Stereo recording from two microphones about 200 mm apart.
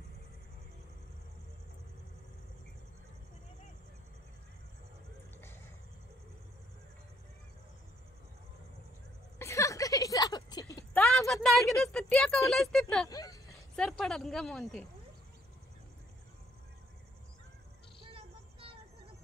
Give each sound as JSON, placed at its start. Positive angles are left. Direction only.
{"t": 9.4, "sound": "a sound", "side_deg": 15}
{"t": 10.9, "sound": "a woman's voice", "side_deg": 5}
{"t": 13.1, "sound": "speech", "side_deg": 20}
{"t": 13.7, "sound": "a woman's voice", "side_deg": 5}
{"t": 18.1, "sound": "child singing", "side_deg": -25}